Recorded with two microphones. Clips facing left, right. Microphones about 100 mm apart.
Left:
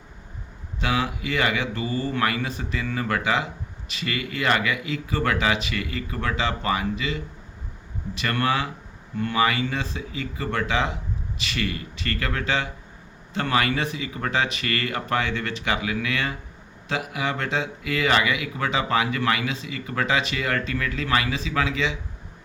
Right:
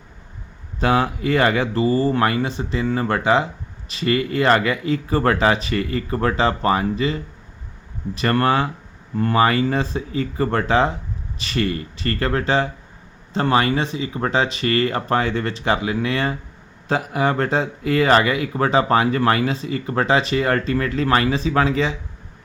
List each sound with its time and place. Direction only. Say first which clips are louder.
0.8 s speech: right 7 dB; 40° right (ahead or behind)